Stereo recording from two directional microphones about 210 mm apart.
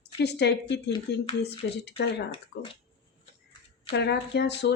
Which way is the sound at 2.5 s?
50° left (ahead or behind).